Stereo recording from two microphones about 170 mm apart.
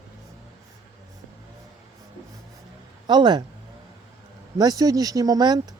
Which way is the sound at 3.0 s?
25° right (ahead or behind).